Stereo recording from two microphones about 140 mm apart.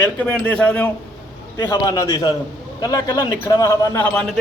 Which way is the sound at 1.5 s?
30° left (ahead or behind).